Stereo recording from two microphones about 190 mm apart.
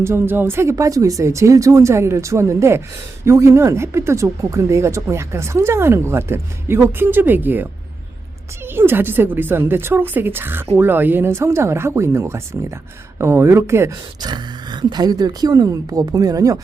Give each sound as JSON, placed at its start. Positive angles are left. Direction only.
{"t": 0.0, "sound": "speech", "side_deg": -10}